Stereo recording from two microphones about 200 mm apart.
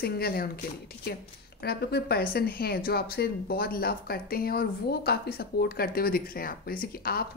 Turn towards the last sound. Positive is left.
turn(degrees=50)  # may be behind; listen again after turning